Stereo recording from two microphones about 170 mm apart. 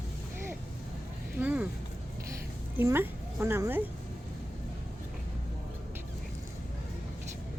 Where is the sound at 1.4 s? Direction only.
10° right (ahead or behind).